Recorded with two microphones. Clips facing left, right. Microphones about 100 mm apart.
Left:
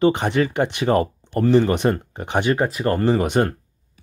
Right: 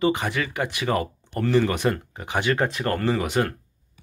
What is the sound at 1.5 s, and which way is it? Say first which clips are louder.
Speech: left 3 dB; 20° left (ahead or behind).